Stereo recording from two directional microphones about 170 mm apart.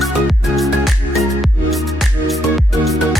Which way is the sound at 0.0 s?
Centre (ahead or behind).